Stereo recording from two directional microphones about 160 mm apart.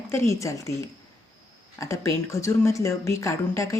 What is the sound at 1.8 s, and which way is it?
Speech, 20° left (ahead or behind).